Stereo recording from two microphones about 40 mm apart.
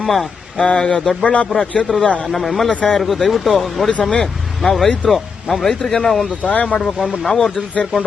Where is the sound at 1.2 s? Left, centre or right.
Left.